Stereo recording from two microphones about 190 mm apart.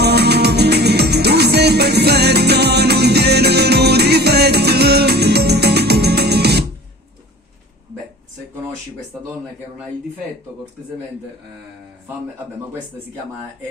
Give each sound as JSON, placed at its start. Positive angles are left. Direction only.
{"t": 0.0, "sound": "music", "side_deg": -60}